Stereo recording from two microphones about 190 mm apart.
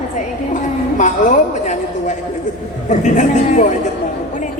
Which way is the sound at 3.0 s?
40° left (ahead or behind).